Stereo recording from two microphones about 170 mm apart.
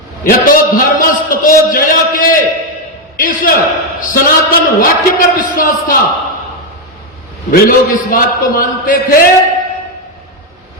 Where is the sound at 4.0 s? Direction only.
55° left (ahead or behind).